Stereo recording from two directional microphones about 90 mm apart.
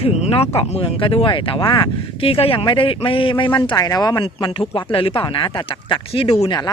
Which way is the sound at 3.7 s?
45° left (ahead or behind).